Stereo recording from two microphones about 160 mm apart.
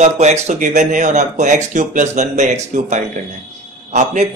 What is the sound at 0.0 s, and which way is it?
A man's voice, 45° right (ahead or behind).